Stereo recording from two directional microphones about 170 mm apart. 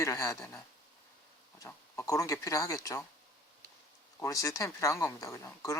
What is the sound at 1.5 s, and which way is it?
Speech, 20° left (ahead or behind).